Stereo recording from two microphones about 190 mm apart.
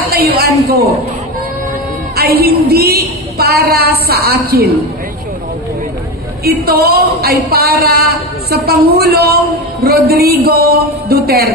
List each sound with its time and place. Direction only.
0.1 s a man's voice: 55° right (ahead or behind)
2.1 s a woman's voice: 55° right (ahead or behind)
6.4 s a woman's voice: 55° right (ahead or behind)